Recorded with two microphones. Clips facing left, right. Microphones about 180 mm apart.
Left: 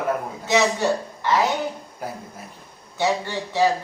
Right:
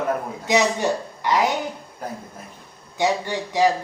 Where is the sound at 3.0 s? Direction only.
15° right (ahead or behind).